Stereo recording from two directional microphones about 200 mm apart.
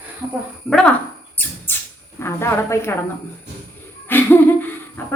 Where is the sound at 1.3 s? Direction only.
10° left (ahead or behind).